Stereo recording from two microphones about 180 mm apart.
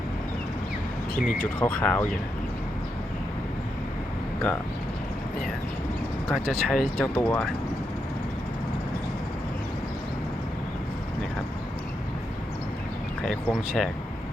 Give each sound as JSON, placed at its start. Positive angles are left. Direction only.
{"t": 1.4, "sound": "speech", "side_deg": 10}
{"t": 6.2, "sound": "speech", "side_deg": 5}
{"t": 13.2, "sound": "speech", "side_deg": 0}